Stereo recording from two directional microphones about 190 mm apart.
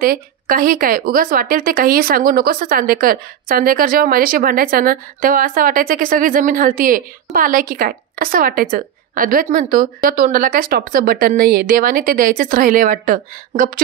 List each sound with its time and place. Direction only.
0.0 s speech: 50° right (ahead or behind)